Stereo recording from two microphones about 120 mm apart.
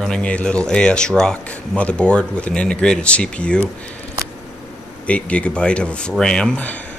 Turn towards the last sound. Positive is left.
turn(degrees=10)  # may be behind; listen again after turning